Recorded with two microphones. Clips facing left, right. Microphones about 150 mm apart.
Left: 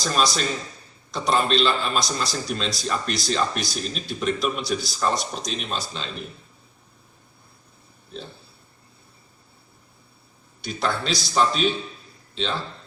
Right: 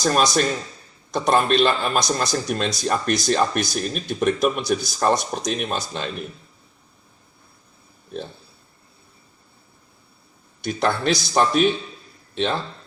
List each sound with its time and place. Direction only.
0.0 s a man's voice: 55° right (ahead or behind)
10.6 s a man's voice: 55° right (ahead or behind)